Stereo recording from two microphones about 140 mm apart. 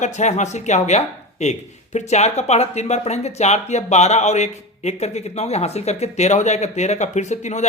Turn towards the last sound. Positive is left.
turn(degrees=55)  # may be behind; listen again after turning